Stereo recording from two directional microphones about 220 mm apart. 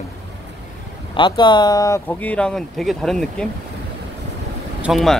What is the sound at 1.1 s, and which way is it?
Speech, 20° left (ahead or behind).